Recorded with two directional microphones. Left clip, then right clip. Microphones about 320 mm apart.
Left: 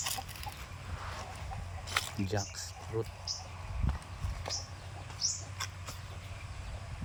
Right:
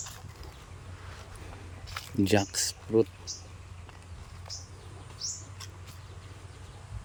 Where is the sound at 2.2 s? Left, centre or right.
Right.